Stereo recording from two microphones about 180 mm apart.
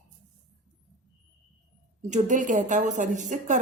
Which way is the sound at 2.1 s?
45° right (ahead or behind).